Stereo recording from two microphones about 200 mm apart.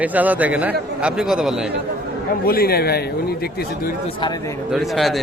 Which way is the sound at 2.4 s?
50° left (ahead or behind).